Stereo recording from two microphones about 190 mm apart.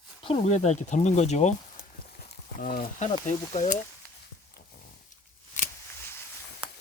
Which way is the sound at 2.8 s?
35° left (ahead or behind).